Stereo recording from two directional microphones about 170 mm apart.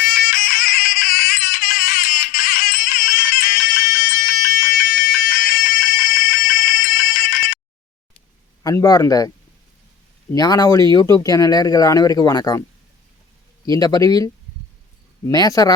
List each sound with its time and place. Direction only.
0.1 s a sound: 60° left (ahead or behind)
8.6 s speech: 20° left (ahead or behind)
10.3 s speech: 20° left (ahead or behind)
13.7 s speech: 20° left (ahead or behind)
15.3 s speech: 20° left (ahead or behind)